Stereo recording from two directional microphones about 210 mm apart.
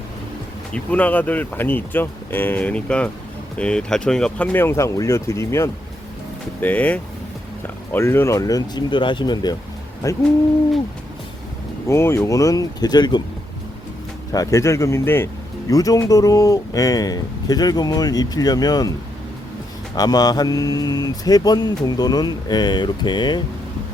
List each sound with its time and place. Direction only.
0.7 s speech: 5° left (ahead or behind)
11.9 s speech: 10° left (ahead or behind)
14.3 s speech: 15° left (ahead or behind)
20.0 s speech: 20° left (ahead or behind)